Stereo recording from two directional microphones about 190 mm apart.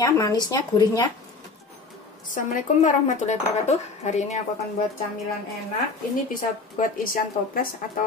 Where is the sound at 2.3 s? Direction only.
40° left (ahead or behind).